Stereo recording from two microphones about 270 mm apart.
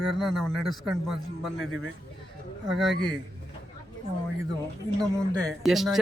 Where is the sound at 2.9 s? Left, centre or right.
Left.